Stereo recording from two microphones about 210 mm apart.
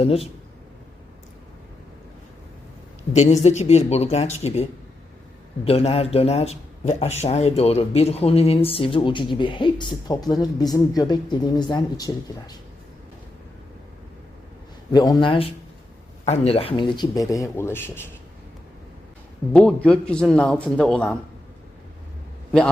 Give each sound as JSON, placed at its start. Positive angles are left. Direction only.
{"t": 0.0, "sound": "speech", "side_deg": 25}
{"t": 3.1, "sound": "speech", "side_deg": 35}
{"t": 5.6, "sound": "speech", "side_deg": 30}
{"t": 14.9, "sound": "speech", "side_deg": 20}
{"t": 19.5, "sound": "speech", "side_deg": 5}